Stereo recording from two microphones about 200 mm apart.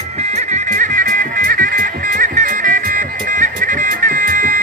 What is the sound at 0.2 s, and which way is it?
Music, 35° right (ahead or behind).